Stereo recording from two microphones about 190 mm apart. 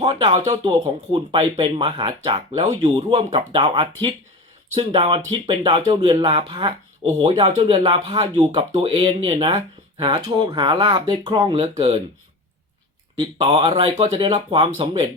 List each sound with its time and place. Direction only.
0.0 s speech: 25° right (ahead or behind)
13.1 s speech: 25° right (ahead or behind)